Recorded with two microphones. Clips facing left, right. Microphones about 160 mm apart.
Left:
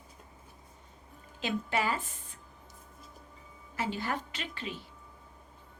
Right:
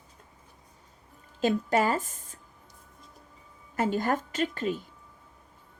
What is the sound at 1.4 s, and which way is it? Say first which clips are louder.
Speech: right 7 dB; 45° right (ahead or behind).